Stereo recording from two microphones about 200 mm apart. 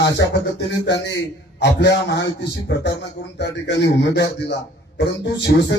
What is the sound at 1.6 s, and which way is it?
Speech, 60° left (ahead or behind).